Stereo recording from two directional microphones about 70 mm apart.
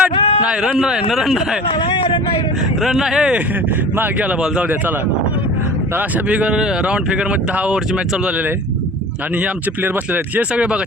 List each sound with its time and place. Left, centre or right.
0.0 s speech: centre
2.8 s speech: centre
3.9 s speech: right
6.0 s speech: centre
9.8 s speech: right